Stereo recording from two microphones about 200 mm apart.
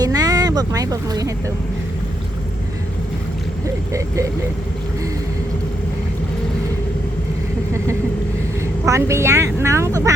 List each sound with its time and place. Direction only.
0.0 s a sound: 20° right (ahead or behind)
3.9 s speech: 15° right (ahead or behind)
8.9 s speech: 15° right (ahead or behind)